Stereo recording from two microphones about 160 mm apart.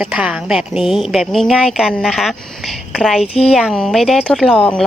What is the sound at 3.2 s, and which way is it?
Speech, 40° left (ahead or behind).